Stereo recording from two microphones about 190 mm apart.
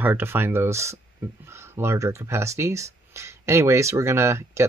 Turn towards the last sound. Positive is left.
turn(degrees=-15)  # may be behind; listen again after turning